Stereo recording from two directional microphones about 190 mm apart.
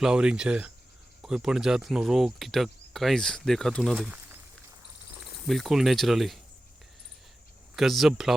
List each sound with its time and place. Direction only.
0.0 s speech: 5° right (ahead or behind)
5.5 s speech: centre (ahead or behind)
7.8 s speech: centre (ahead or behind)